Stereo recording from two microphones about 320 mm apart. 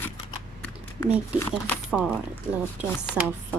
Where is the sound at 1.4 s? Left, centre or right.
Centre.